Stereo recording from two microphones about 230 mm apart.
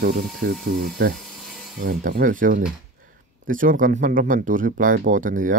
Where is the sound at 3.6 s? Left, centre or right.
Right.